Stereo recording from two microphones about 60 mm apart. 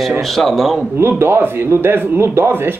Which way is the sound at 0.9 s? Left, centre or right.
Right.